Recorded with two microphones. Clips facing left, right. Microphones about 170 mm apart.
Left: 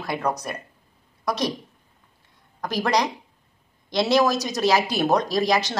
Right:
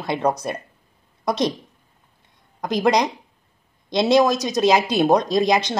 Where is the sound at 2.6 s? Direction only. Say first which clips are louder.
Right 4 dB; 20° right (ahead or behind).